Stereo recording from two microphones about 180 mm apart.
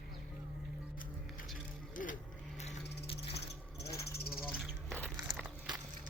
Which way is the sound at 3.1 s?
35° left (ahead or behind).